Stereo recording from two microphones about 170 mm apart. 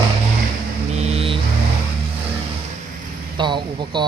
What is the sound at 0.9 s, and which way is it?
Vehicle, 40° right (ahead or behind).